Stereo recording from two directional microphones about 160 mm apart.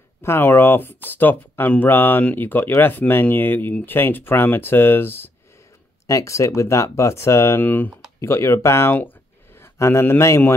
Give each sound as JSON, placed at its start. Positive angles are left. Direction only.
{"t": 0.2, "sound": "speech", "side_deg": 15}